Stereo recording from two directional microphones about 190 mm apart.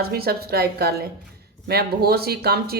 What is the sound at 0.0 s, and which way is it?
Speech, 55° right (ahead or behind).